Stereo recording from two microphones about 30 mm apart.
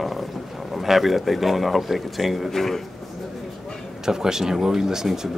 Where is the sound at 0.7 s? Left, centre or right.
Centre.